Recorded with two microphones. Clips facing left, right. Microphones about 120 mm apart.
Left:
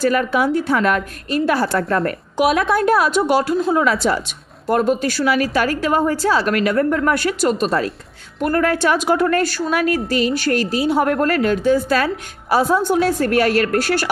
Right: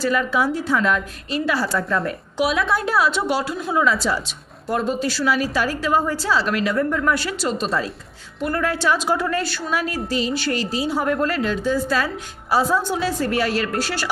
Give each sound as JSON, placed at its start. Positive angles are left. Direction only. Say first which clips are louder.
{"t": 0.0, "sound": "a woman's voice", "louder": "left 3 dB", "side_deg": 55}